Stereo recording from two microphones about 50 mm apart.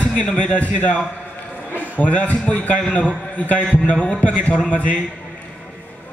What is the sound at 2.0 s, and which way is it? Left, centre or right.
A man's voice, left.